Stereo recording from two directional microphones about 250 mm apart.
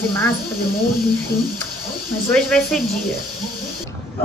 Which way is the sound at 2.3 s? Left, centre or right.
Centre.